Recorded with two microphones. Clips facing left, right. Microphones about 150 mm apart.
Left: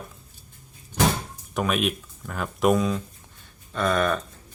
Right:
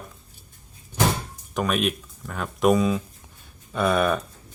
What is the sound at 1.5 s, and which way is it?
Speech, centre (ahead or behind).